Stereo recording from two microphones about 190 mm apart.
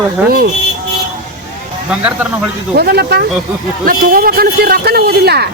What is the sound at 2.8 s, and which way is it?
A man's voice, 55° right (ahead or behind).